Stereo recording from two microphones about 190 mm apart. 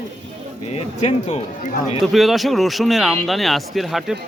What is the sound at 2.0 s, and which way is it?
Speech, centre (ahead or behind).